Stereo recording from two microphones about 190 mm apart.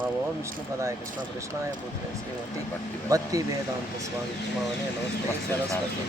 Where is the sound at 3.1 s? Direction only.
20° right (ahead or behind).